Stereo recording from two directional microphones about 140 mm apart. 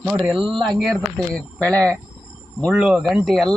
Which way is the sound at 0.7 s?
5° left (ahead or behind).